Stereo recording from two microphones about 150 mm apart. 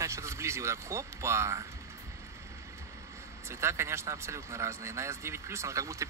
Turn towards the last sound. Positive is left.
turn(degrees=-20)  # may be behind; listen again after turning